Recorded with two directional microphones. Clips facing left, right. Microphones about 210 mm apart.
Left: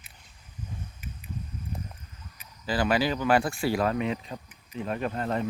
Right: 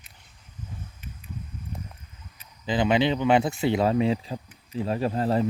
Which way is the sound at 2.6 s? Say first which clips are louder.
Right 3 dB; 20° right (ahead or behind).